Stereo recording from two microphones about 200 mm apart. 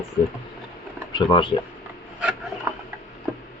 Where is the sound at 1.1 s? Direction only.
25° left (ahead or behind).